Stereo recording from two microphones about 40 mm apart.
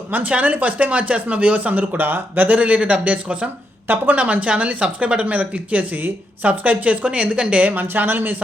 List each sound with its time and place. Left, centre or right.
0.1 s speech: right
2.6 s speech: right
3.8 s speech: right
7.2 s a woman's voice: right
7.7 s speech: right